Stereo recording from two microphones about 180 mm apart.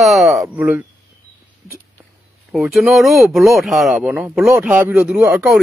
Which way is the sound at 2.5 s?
Centre (ahead or behind).